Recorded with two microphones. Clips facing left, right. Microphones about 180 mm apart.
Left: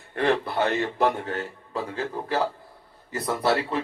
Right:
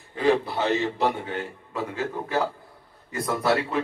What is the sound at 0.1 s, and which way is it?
A man's voice, 60° left (ahead or behind).